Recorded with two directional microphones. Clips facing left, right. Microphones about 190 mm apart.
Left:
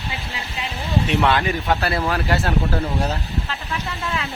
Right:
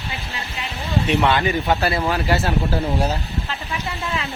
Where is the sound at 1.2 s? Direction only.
Centre (ahead or behind).